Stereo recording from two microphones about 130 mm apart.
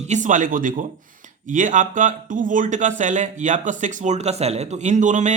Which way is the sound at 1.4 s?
80° right.